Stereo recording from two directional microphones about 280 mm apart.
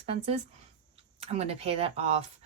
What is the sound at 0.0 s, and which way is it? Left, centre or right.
A woman's voice, right.